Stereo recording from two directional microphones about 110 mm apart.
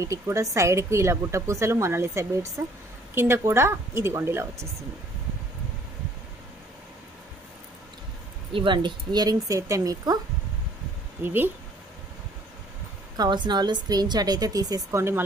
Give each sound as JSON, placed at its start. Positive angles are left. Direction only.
{"t": 0.0, "sound": "a woman's voice", "side_deg": -25}
{"t": 8.5, "sound": "a woman's voice", "side_deg": -45}
{"t": 11.2, "sound": "a woman's voice", "side_deg": -20}
{"t": 13.1, "sound": "a woman's voice", "side_deg": -40}